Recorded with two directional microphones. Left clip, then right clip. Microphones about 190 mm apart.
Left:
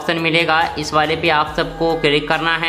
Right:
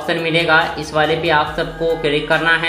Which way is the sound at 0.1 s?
20° left (ahead or behind).